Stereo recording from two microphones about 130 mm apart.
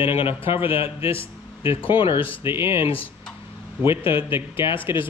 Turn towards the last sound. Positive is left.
turn(degrees=40)  # may be behind; listen again after turning